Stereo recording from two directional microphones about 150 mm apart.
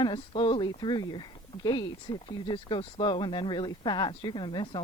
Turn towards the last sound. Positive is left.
turn(degrees=30)  # may be behind; listen again after turning